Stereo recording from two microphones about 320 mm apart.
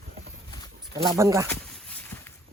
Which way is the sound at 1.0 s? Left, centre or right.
Centre.